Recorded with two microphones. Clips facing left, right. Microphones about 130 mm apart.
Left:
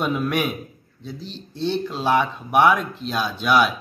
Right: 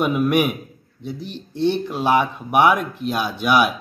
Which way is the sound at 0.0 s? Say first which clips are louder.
Right 4 dB; 15° right (ahead or behind).